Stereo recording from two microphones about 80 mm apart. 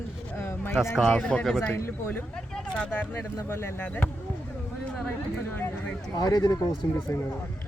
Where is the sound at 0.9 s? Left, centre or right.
Centre.